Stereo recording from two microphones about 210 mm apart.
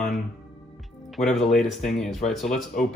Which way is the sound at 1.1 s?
Centre (ahead or behind).